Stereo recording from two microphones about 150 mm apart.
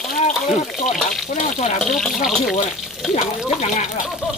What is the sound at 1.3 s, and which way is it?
Speech, 55° left (ahead or behind).